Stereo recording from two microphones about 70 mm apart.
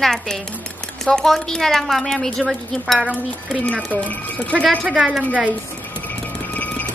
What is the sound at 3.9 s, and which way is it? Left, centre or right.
Speech, left.